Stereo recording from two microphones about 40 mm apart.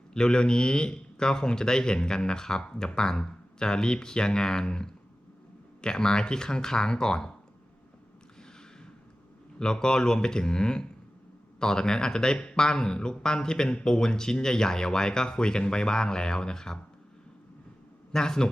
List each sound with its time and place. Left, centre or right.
0.1 s speech: centre
9.6 s speech: centre
18.1 s speech: centre